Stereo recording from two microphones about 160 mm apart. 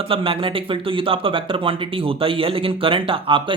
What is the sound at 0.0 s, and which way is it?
Speech, 35° right (ahead or behind).